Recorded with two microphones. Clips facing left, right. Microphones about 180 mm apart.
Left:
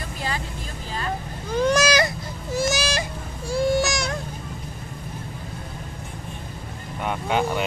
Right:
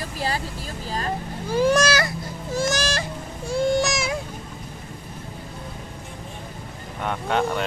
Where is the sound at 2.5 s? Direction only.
10° left (ahead or behind).